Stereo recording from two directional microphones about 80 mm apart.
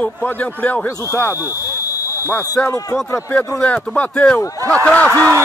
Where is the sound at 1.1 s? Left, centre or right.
Left.